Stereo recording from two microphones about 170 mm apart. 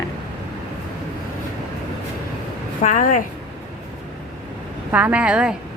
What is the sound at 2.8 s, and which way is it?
Speech, 50° left (ahead or behind).